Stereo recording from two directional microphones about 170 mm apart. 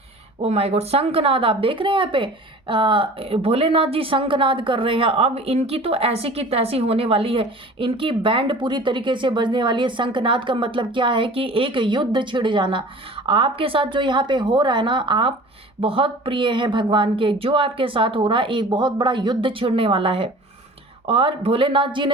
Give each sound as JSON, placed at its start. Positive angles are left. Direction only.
{"t": 0.4, "sound": "a woman's voice", "side_deg": -40}